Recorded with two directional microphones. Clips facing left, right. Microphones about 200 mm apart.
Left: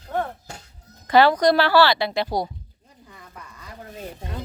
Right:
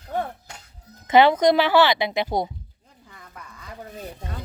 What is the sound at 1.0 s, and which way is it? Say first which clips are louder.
A woman's voice: right 1 dB; 20° right (ahead or behind).